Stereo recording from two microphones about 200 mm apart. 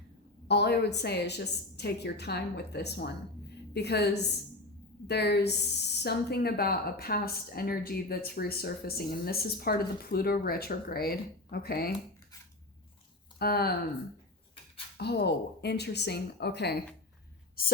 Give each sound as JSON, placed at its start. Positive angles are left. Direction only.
{"t": 0.4, "sound": "a woman's voice", "side_deg": 55}
{"t": 13.4, "sound": "a woman's voice", "side_deg": 50}
{"t": 14.9, "sound": "a woman's voice", "side_deg": 55}